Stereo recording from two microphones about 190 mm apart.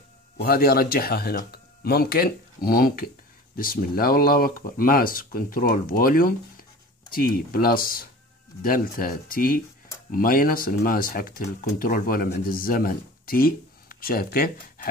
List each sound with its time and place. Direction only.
0.4 s speech: 50° left (ahead or behind)